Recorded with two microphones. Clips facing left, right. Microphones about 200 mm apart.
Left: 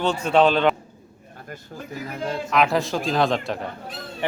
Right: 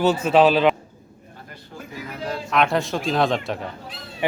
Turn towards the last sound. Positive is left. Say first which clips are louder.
# right 4 dB
turn(degrees=-10)  # may be behind; listen again after turning